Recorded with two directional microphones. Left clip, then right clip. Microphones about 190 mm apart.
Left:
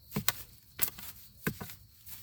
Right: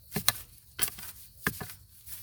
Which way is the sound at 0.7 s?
35° right (ahead or behind).